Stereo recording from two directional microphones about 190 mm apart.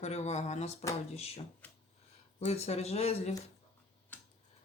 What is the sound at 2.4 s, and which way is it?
Speech, 35° left (ahead or behind).